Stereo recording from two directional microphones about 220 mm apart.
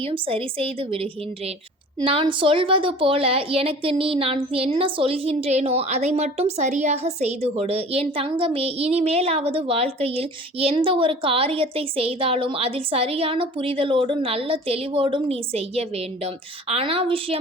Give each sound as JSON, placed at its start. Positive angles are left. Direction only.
{"t": 0.0, "sound": "a woman's voice", "side_deg": -25}